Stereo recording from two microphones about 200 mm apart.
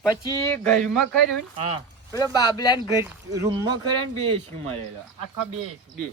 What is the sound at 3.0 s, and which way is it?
Speech, 15° right (ahead or behind).